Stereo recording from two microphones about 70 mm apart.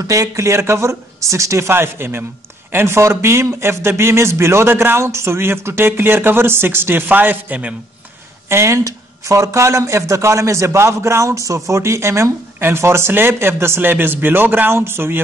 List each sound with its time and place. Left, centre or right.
0.0 s speech: right
8.5 s speech: right